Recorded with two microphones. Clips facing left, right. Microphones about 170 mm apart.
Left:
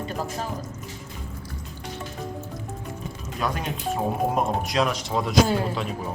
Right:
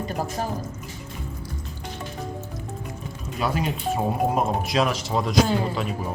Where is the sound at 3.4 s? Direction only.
5° right (ahead or behind).